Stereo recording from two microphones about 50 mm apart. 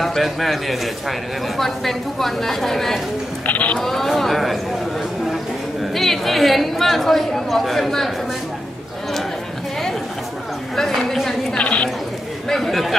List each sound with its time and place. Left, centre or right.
0.0 s a woman's voice: centre
3.4 s sheep: left
3.8 s a woman's voice: centre
5.9 s a woman's voice: centre
10.8 s a woman's voice: centre
11.5 s a sound: left
12.4 s speech: centre